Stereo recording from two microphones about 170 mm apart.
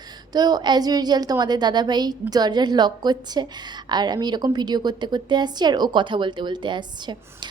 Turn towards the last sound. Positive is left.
turn(degrees=-25)  # may be behind; listen again after turning